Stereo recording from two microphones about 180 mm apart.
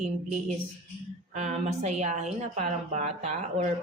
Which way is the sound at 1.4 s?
40° right (ahead or behind).